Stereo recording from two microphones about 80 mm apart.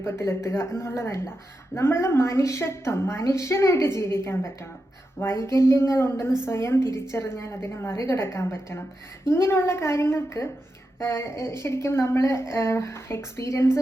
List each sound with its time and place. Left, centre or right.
0.0 s a woman's voice: left